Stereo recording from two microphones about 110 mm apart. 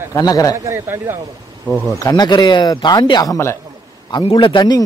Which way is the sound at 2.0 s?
40° left (ahead or behind).